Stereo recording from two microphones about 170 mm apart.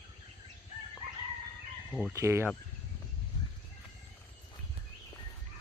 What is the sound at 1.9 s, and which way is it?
Speech, 5° left (ahead or behind).